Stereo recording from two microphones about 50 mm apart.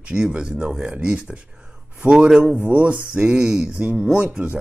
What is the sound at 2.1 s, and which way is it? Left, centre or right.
Speech, centre.